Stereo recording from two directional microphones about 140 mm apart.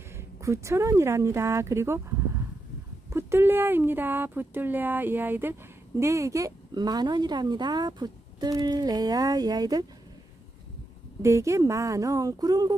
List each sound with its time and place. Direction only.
0.4 s speech: 20° right (ahead or behind)
3.1 s speech: 20° right (ahead or behind)
11.2 s speech: 20° right (ahead or behind)